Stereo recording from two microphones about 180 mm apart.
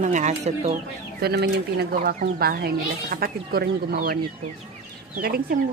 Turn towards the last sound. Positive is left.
turn(degrees=-55)  # may be behind; listen again after turning